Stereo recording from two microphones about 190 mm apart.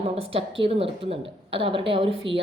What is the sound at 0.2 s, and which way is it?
A woman's voice, 30° right (ahead or behind).